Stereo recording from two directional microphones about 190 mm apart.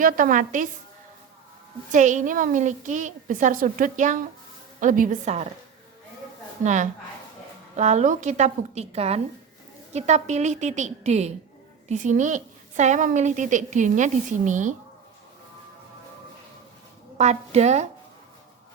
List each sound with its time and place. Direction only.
0.0 s a woman's voice: 45° right (ahead or behind)
1.9 s a woman's voice: 40° right (ahead or behind)
6.6 s a woman's voice: 40° right (ahead or behind)
7.8 s a woman's voice: 40° right (ahead or behind)
17.2 s a woman's voice: 35° right (ahead or behind)